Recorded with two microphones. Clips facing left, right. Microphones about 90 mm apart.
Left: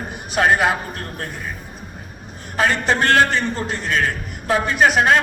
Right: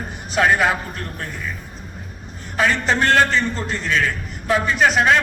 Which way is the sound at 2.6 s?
55° left (ahead or behind).